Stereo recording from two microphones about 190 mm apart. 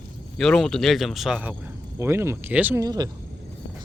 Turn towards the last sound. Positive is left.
turn(degrees=-20)  # may be behind; listen again after turning